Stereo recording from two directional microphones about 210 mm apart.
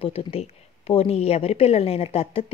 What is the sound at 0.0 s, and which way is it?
A woman's voice, 25° left (ahead or behind).